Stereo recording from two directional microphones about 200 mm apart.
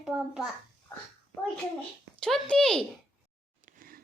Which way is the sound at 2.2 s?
5° left (ahead or behind).